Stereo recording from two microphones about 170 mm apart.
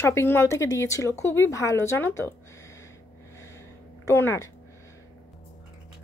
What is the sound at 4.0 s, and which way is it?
Speech, 15° left (ahead or behind).